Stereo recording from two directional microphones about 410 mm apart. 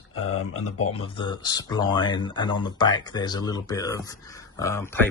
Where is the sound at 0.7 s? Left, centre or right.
Centre.